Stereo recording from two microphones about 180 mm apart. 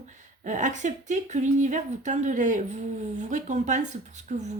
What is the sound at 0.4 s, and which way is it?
Speech, 45° right (ahead or behind).